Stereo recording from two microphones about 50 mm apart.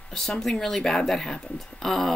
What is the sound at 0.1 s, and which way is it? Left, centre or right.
Speech, centre.